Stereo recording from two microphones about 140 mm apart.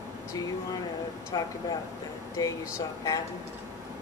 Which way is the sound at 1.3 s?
30° left (ahead or behind).